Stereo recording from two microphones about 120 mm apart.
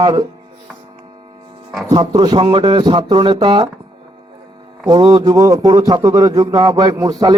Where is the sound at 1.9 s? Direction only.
35° right (ahead or behind).